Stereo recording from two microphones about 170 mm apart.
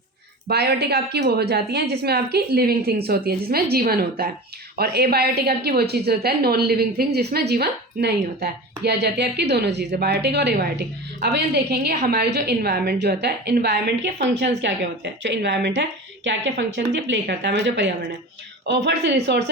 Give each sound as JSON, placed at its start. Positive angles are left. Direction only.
{"t": 0.4, "sound": "a woman's voice", "side_deg": -70}